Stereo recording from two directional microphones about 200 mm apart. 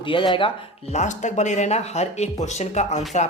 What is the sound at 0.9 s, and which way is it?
Speech, 35° left (ahead or behind).